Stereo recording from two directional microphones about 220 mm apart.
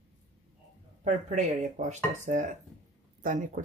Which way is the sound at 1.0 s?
35° right (ahead or behind).